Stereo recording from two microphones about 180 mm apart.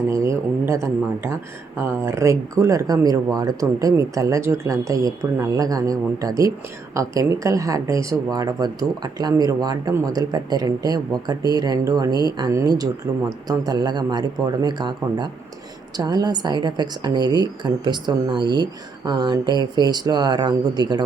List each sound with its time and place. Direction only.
0.1 s speech: 15° right (ahead or behind)